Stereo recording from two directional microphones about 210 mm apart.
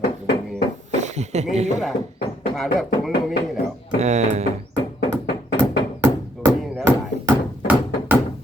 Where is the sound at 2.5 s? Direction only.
Centre (ahead or behind).